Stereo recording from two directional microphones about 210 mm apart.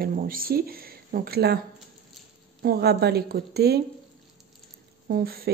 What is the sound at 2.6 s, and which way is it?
Speech, 50° right (ahead or behind).